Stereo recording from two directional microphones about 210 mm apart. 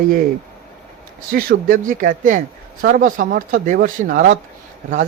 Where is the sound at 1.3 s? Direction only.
40° right (ahead or behind).